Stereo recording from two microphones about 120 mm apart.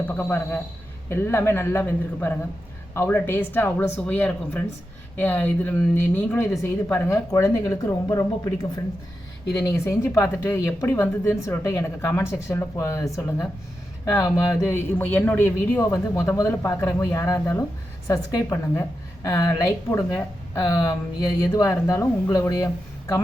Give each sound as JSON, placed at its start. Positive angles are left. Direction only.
{"t": 0.1, "sound": "a woman's voice", "side_deg": 20}
{"t": 9.6, "sound": "a woman's voice", "side_deg": 25}
{"t": 14.9, "sound": "a woman's voice", "side_deg": 15}